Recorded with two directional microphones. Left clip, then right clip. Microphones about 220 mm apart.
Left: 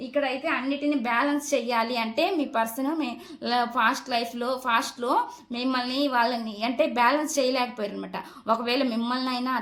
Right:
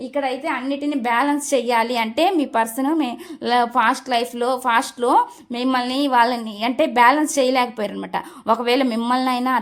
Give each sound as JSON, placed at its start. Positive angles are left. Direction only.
{"t": 0.2, "sound": "a woman's voice", "side_deg": -45}